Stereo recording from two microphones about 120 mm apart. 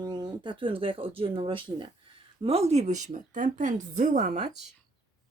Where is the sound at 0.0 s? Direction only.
35° right (ahead or behind).